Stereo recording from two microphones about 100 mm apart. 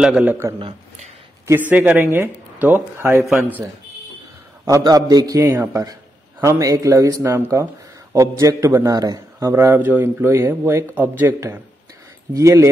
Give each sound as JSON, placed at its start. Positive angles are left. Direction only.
{"t": 0.0, "sound": "speech", "side_deg": -5}
{"t": 0.3, "sound": "speech", "side_deg": -25}
{"t": 0.6, "sound": "speech", "side_deg": -65}
{"t": 1.5, "sound": "speech", "side_deg": -15}
{"t": 4.6, "sound": "a man's voice", "side_deg": -35}
{"t": 5.4, "sound": "a man's voice", "side_deg": -25}
{"t": 9.5, "sound": "a man's voice", "side_deg": -25}